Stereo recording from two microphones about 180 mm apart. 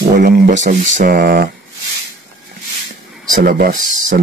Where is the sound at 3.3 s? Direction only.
50° right (ahead or behind).